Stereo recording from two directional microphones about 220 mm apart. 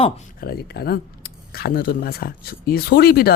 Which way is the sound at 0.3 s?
45° left (ahead or behind).